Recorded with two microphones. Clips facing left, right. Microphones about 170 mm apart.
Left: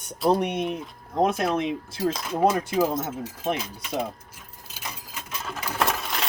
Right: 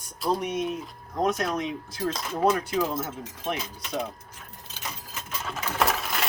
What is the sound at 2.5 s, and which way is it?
Speech, 25° left (ahead or behind).